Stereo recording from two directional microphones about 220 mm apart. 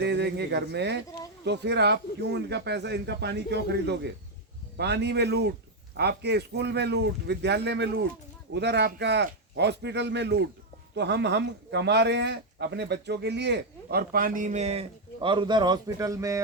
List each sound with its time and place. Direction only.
0.0 s speech: 50° right (ahead or behind); by 16.4 s 15° right (ahead or behind)